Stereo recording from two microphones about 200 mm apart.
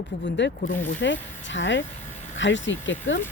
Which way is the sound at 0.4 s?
60° left (ahead or behind).